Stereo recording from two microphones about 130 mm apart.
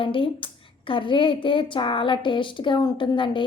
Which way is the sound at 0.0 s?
40° left (ahead or behind).